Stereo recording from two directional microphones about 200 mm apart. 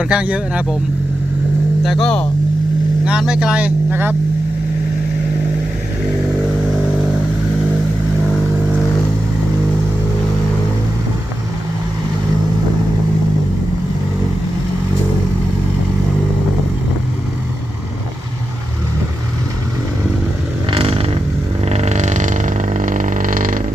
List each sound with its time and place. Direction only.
0.0 s speech: 5° right (ahead or behind)
1.8 s speech: centre (ahead or behind)
20.7 s vehicle: 30° right (ahead or behind)
21.6 s a sound: 35° right (ahead or behind)